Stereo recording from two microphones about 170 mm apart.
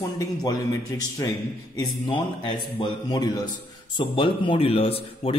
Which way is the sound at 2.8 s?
25° left (ahead or behind).